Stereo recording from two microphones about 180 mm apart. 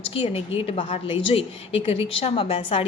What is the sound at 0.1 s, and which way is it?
A woman's voice, 30° left (ahead or behind).